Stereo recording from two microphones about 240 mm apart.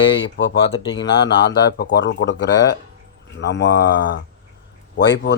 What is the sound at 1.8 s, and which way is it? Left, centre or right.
Speech, left.